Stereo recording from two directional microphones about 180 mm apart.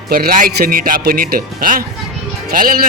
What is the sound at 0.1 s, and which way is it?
Speech, 55° right (ahead or behind).